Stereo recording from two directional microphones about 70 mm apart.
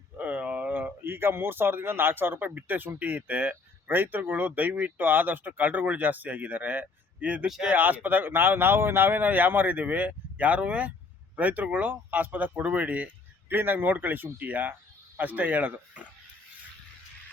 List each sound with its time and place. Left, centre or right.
0.2 s speech: right
7.4 s speech: centre
7.7 s speech: right